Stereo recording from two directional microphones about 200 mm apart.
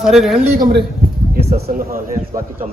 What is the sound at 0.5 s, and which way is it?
Speech, 55° right (ahead or behind).